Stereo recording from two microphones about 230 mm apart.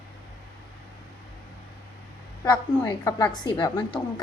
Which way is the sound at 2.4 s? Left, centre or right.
Centre.